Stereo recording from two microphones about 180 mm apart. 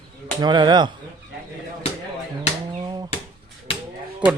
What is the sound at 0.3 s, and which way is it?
Speech, 25° right (ahead or behind).